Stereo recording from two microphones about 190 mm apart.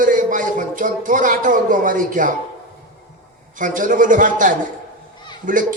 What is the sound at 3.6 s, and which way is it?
A man's voice, 45° right (ahead or behind).